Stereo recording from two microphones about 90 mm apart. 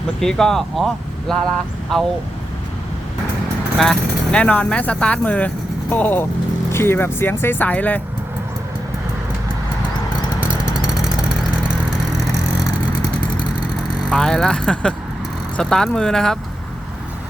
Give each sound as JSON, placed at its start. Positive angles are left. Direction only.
{"t": 0.2, "sound": "speech", "side_deg": 5}
{"t": 3.8, "sound": "speech", "side_deg": 5}
{"t": 10.8, "sound": "vehicle", "side_deg": -10}
{"t": 14.1, "sound": "speech", "side_deg": 10}